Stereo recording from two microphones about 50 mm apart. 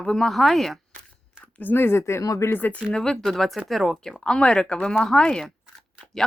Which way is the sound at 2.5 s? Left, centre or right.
Left.